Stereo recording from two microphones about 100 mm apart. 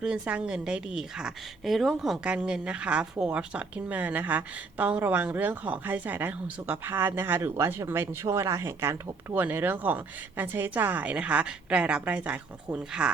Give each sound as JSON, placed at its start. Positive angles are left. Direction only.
{"t": 0.0, "sound": "a woman's voice", "side_deg": -10}